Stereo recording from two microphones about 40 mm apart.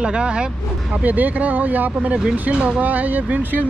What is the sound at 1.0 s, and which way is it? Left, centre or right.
Speech, right.